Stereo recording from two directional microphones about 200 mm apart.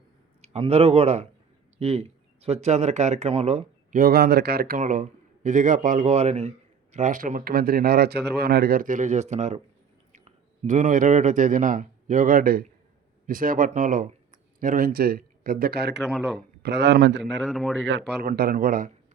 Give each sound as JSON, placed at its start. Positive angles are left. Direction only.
{"t": 0.4, "sound": "speech", "side_deg": -30}
{"t": 16.0, "sound": "a man's voice", "side_deg": 0}
{"t": 16.6, "sound": "speech", "side_deg": -60}
{"t": 17.4, "sound": "a man's voice", "side_deg": 0}
{"t": 17.8, "sound": "speech", "side_deg": -60}